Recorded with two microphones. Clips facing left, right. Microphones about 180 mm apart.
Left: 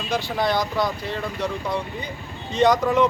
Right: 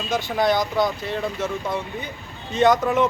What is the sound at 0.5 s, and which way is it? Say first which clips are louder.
Speech: right 2 dB; 20° right (ahead or behind).